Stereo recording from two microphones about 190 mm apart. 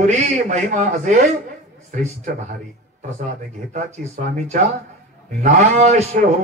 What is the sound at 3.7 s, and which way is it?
A man's voice, 35° right (ahead or behind).